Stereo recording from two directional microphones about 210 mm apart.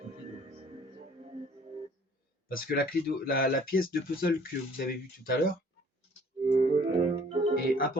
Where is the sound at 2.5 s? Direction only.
45° left (ahead or behind).